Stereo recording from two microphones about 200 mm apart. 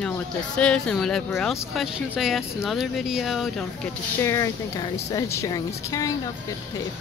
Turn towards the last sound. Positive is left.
turn(degrees=15)  # may be behind; listen again after turning